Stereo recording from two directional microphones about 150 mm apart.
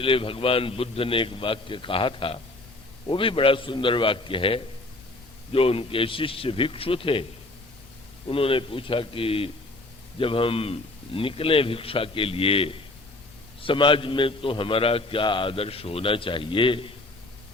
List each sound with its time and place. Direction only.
0.0 s a man's voice: 35° left (ahead or behind)
8.3 s a man's voice: 35° left (ahead or behind)